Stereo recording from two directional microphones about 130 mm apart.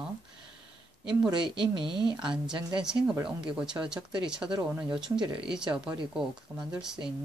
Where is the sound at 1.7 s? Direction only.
40° right (ahead or behind).